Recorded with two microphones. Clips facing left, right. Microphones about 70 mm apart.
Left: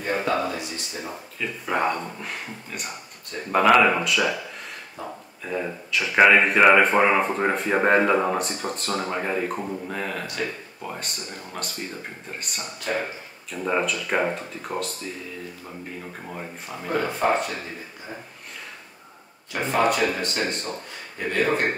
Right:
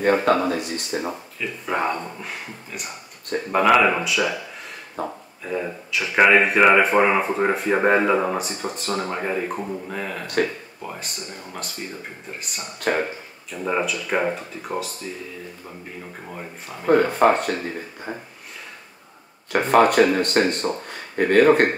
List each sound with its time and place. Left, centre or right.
0.0 s speech: right
1.1 s speech: centre
5.0 s speech: right
5.4 s speech: centre
10.2 s speech: right
10.8 s speech: centre
16.3 s speech: centre
17.2 s speech: right
19.5 s speech: right